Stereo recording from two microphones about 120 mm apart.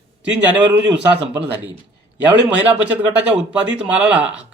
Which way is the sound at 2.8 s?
10° right (ahead or behind).